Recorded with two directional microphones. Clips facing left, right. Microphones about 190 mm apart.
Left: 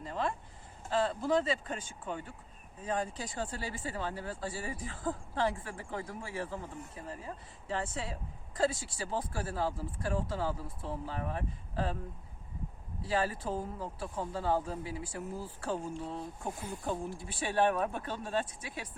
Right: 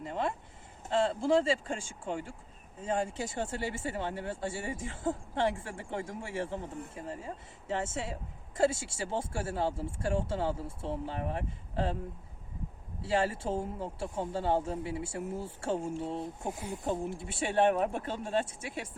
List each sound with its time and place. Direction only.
0.0 s speech: 20° right (ahead or behind)
13.0 s speech: 25° right (ahead or behind)